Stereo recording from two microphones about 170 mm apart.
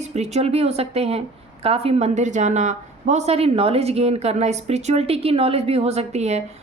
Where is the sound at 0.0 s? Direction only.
40° right (ahead or behind).